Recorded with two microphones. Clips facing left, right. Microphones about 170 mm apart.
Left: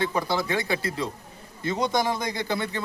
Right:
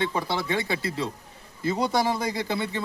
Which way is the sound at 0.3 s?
30° right (ahead or behind).